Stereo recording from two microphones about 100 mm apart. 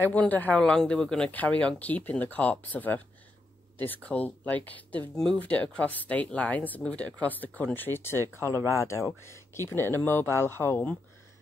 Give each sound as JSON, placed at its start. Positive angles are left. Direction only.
{"t": 0.0, "sound": "speech", "side_deg": 15}
{"t": 8.5, "sound": "speech", "side_deg": -30}
{"t": 9.2, "sound": "speech", "side_deg": 25}